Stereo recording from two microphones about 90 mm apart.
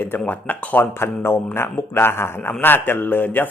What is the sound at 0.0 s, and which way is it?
Speech, 20° left (ahead or behind).